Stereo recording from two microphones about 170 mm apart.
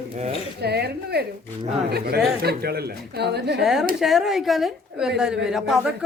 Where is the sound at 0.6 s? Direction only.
70° right (ahead or behind).